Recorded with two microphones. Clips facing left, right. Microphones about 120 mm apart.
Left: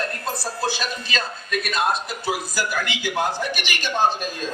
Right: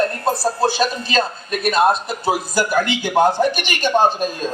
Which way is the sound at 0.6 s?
35° right (ahead or behind).